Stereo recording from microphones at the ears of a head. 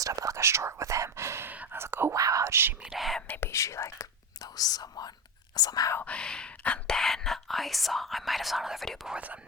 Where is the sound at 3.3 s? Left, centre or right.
Left.